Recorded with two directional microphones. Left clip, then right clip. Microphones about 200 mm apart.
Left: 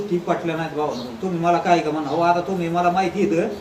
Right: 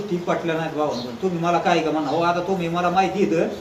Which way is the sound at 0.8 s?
Centre (ahead or behind).